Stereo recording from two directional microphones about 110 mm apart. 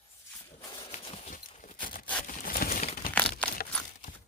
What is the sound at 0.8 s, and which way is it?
Horse, 60° left (ahead or behind).